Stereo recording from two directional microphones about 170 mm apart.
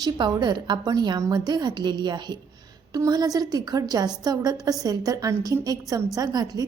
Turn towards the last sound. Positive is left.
turn(degrees=-25)  # may be behind; listen again after turning